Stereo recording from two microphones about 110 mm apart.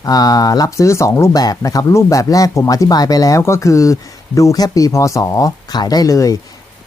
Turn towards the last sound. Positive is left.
turn(degrees=30)  # may be behind; listen again after turning